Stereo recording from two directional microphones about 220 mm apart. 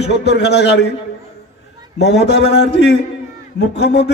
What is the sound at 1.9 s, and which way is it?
A man's voice, 50° left (ahead or behind).